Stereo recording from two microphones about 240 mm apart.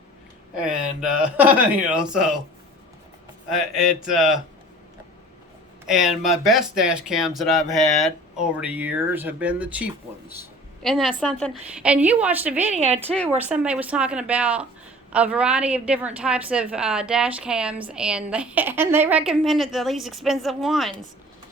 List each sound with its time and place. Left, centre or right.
0.5 s a woman's voice: centre
3.5 s a woman's voice: centre
5.8 s a woman's voice: centre
12.7 s speech: right
13.4 s a woman's voice: centre